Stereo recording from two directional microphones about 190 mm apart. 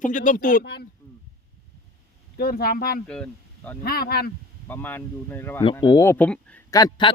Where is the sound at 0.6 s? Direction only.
60° left (ahead or behind).